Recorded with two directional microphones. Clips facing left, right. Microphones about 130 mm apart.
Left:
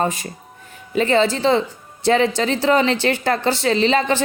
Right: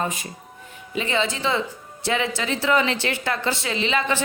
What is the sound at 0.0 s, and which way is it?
Speech, 35° left (ahead or behind).